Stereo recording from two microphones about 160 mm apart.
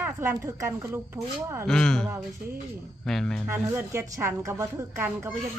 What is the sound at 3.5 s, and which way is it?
A woman's voice, 15° right (ahead or behind).